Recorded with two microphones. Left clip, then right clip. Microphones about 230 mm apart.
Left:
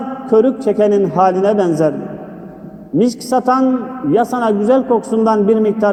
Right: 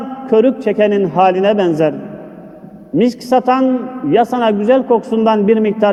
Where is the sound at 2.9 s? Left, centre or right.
Right.